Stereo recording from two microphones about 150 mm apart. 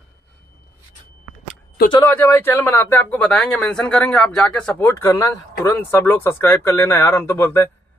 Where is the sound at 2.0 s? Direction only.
15° left (ahead or behind).